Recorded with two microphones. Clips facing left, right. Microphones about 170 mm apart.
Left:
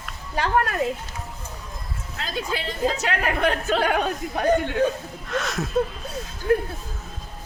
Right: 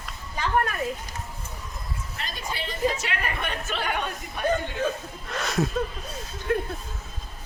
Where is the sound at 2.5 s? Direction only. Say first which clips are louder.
Left 6 dB; 90° left.